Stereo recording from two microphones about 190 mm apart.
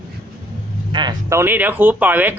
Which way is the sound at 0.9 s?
25° right (ahead or behind).